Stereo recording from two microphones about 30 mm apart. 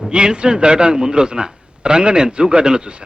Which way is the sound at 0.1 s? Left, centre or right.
Right.